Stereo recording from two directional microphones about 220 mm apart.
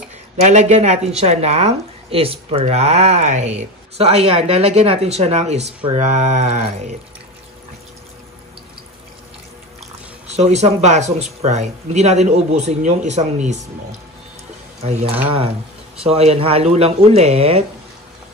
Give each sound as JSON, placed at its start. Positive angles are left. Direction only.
{"t": 0.4, "sound": "a man's voice", "side_deg": -30}
{"t": 10.2, "sound": "a man's voice", "side_deg": -30}
{"t": 15.2, "sound": "speech", "side_deg": -25}